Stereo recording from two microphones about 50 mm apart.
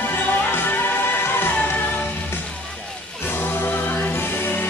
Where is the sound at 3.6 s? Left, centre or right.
Left.